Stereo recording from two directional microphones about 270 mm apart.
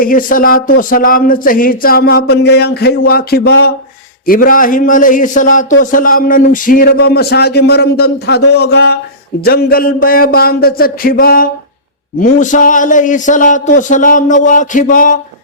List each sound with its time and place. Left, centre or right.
0.0 s a man's voice: left